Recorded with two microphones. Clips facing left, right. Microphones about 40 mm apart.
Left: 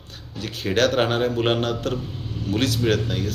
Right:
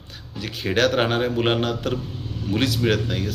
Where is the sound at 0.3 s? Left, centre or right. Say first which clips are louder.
Even; centre.